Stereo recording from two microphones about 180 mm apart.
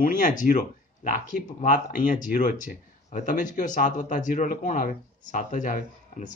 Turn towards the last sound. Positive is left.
turn(degrees=45)  # may be behind; listen again after turning